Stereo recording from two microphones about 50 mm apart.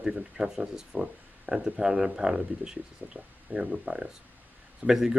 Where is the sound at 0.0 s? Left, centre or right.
Centre.